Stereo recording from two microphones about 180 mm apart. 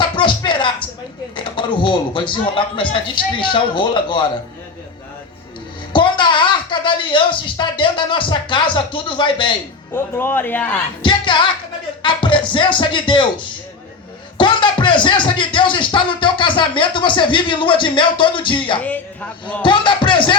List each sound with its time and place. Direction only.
0.0 s music: 25° left (ahead or behind)
1.4 s speech: 25° left (ahead or behind)
5.9 s a sound: 25° left (ahead or behind)
8.7 s speech: 25° left (ahead or behind)
9.9 s a man's voice: 10° left (ahead or behind)
11.0 s music: 25° left (ahead or behind)
12.0 s speech: 25° left (ahead or behind)
14.3 s speech: 25° left (ahead or behind)
18.8 s a man's voice: 10° left (ahead or behind)
19.6 s speech: 25° left (ahead or behind)